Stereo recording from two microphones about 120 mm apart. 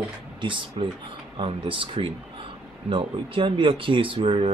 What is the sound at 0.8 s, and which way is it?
Speech, 50° right (ahead or behind).